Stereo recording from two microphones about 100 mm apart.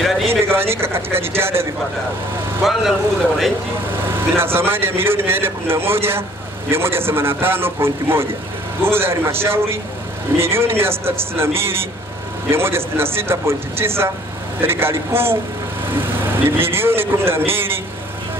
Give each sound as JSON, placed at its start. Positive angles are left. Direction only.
{"t": 0.3, "sound": "speech", "side_deg": -25}
{"t": 2.6, "sound": "speech", "side_deg": 0}
{"t": 4.1, "sound": "a man's voice", "side_deg": -25}